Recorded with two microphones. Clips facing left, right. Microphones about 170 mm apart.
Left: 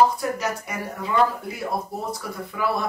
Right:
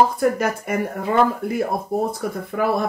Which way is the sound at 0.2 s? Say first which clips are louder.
Right 7 dB; 55° right (ahead or behind).